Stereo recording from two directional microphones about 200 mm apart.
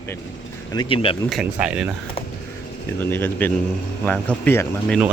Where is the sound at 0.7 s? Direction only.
25° left (ahead or behind).